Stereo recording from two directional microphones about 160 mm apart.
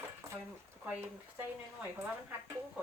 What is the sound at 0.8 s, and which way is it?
Speech, 15° right (ahead or behind).